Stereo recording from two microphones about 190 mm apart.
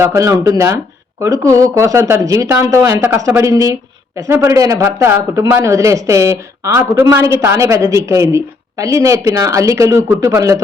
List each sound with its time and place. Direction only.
0.0 s speech: 15° right (ahead or behind)